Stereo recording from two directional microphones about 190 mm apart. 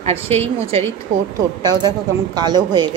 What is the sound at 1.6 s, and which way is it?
Speech, 20° right (ahead or behind).